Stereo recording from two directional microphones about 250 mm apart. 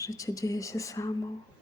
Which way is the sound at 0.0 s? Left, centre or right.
Centre.